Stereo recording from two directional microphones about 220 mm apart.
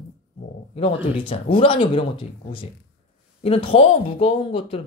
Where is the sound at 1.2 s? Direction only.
25° left (ahead or behind).